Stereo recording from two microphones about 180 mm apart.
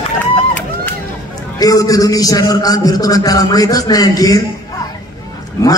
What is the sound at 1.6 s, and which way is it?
A man's voice, 20° left (ahead or behind).